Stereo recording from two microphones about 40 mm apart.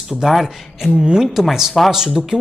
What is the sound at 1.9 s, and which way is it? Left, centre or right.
Speech, centre.